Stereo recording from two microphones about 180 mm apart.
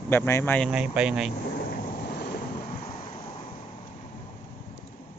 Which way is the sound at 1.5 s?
60° left (ahead or behind).